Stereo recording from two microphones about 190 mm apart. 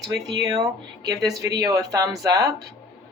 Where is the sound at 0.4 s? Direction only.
20° right (ahead or behind).